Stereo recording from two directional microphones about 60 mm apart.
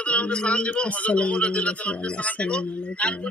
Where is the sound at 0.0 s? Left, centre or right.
Centre.